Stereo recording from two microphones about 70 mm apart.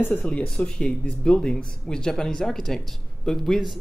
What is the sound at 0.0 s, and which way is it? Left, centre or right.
Speech, left.